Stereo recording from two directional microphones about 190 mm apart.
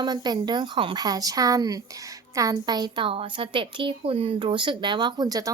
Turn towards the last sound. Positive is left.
turn(degrees=-20)  # may be behind; listen again after turning